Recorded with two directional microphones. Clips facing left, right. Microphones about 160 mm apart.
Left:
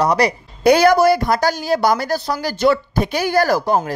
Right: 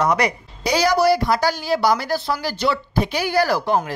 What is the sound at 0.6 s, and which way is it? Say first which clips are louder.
A woman's voice: left 5 dB; 55° left (ahead or behind).